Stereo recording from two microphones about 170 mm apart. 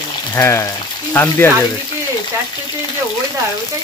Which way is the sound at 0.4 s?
15° left (ahead or behind).